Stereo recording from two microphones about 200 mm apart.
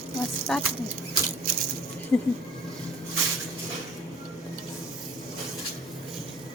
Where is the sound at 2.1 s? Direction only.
10° left (ahead or behind).